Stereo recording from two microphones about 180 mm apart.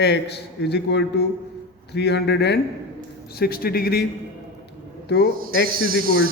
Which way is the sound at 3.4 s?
55° left (ahead or behind).